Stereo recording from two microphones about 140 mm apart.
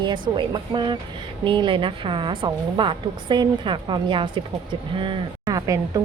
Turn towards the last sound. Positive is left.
turn(degrees=-25)  # may be behind; listen again after turning